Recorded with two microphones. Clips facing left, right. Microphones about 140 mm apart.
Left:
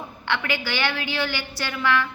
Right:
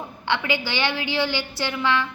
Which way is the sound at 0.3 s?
15° right (ahead or behind).